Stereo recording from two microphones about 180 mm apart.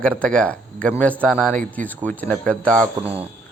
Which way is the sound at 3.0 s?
10° right (ahead or behind).